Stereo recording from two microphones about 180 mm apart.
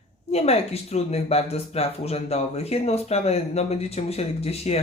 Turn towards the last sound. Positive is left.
turn(degrees=35)  # may be behind; listen again after turning